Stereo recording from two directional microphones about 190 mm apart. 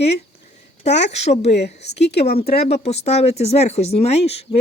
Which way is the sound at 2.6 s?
35° left (ahead or behind).